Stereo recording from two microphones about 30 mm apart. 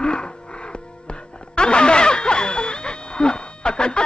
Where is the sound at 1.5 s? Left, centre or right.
Left.